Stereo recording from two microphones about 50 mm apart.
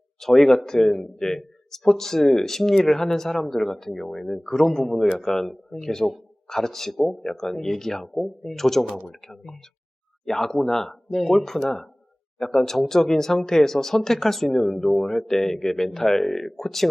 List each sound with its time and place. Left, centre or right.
0.2 s speech: centre
1.1 s speech: centre